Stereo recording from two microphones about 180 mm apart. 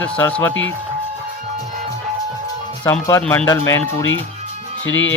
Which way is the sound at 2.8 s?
10° left (ahead or behind).